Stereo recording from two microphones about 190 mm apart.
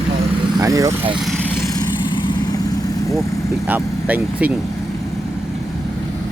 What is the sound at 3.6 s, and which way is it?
Speech, 10° right (ahead or behind).